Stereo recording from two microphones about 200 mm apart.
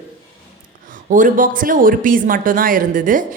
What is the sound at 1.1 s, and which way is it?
A woman's voice, 40° right (ahead or behind).